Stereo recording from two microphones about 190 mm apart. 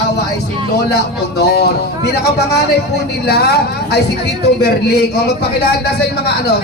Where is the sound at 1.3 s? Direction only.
60° left (ahead or behind).